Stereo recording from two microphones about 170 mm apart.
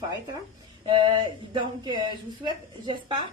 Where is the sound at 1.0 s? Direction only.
25° right (ahead or behind).